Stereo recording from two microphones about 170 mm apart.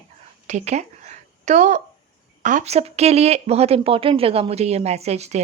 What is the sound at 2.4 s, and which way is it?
Speech, 45° right (ahead or behind).